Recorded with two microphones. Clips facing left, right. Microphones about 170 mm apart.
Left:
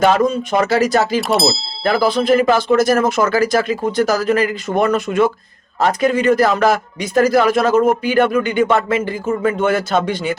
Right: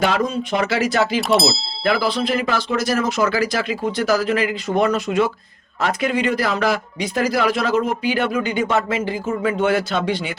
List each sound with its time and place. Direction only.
0.0 s speech: 45° left (ahead or behind)
1.2 s speech: centre (ahead or behind)
1.8 s speech: 45° left (ahead or behind)
5.8 s speech: 40° left (ahead or behind)